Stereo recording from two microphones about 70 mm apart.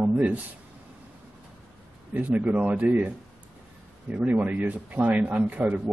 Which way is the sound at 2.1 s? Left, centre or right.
Right.